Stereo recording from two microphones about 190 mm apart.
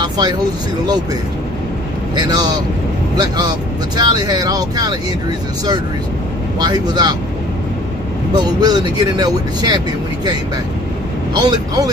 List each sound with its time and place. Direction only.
2.1 s speech: 20° right (ahead or behind)
6.6 s speech: 20° right (ahead or behind)
8.4 s speech: 20° right (ahead or behind)
11.3 s speech: 20° right (ahead or behind)